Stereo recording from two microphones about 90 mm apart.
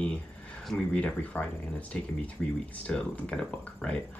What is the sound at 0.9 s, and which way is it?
Speech, 15° left (ahead or behind).